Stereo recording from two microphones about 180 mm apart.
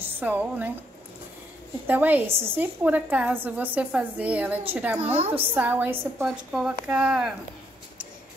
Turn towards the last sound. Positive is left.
turn(degrees=-5)  # may be behind; listen again after turning